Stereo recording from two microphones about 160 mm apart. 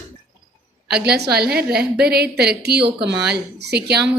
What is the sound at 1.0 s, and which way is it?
A woman's voice, 90° right.